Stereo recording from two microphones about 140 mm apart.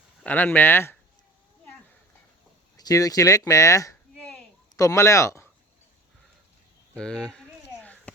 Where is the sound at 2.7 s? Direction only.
25° left (ahead or behind).